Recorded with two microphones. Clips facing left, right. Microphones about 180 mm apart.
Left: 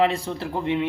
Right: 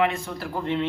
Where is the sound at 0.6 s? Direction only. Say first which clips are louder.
Left 2 dB; 15° left (ahead or behind).